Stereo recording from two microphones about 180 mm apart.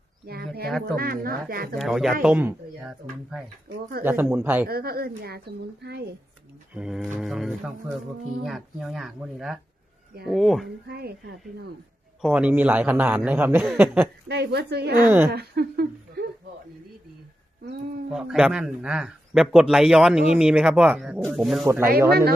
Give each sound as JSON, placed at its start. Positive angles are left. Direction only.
{"t": 0.3, "sound": "speech", "side_deg": -60}
{"t": 0.7, "sound": "speech", "side_deg": 0}
{"t": 0.9, "sound": "speech", "side_deg": -55}
{"t": 1.8, "sound": "a man's voice", "side_deg": 0}
{"t": 4.7, "sound": "speech", "side_deg": -55}
{"t": 6.7, "sound": "speech", "side_deg": -5}
{"t": 10.8, "sound": "speech", "side_deg": -65}
{"t": 12.2, "sound": "a man's voice", "side_deg": -5}
{"t": 14.3, "sound": "speech", "side_deg": -65}
{"t": 15.0, "sound": "a man's voice", "side_deg": -10}
{"t": 15.3, "sound": "speech", "side_deg": -65}
{"t": 18.1, "sound": "speech", "side_deg": -5}
{"t": 22.1, "sound": "speech", "side_deg": -60}